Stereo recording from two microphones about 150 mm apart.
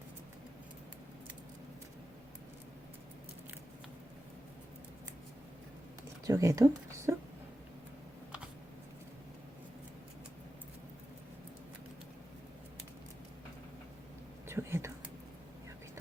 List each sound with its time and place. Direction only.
6.2 s speech: 20° right (ahead or behind)
14.4 s whispering: 15° right (ahead or behind)